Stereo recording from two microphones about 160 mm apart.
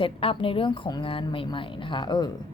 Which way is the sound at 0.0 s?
35° left (ahead or behind).